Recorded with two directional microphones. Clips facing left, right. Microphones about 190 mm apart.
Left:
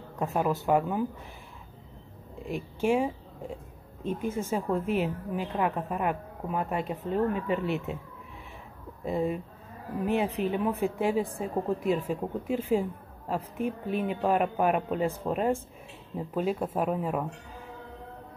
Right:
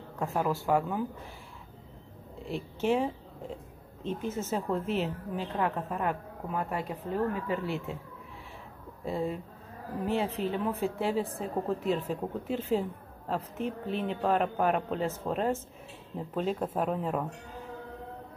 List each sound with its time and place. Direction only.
0.2 s speech: 20° left (ahead or behind)
2.4 s a woman's voice: 15° left (ahead or behind)
9.0 s a woman's voice: 15° left (ahead or behind)